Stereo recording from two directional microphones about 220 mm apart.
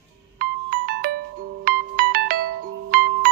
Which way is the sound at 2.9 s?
45° right (ahead or behind).